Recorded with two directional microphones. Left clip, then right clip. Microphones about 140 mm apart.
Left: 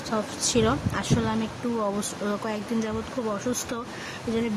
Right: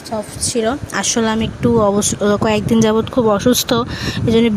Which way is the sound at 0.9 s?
55° right (ahead or behind).